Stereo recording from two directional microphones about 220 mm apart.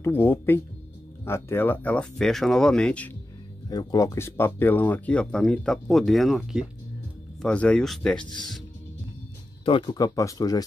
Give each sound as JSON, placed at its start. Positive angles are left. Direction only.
{"t": 0.0, "sound": "speech", "side_deg": 10}
{"t": 3.6, "sound": "speech", "side_deg": 20}
{"t": 9.7, "sound": "speech", "side_deg": 20}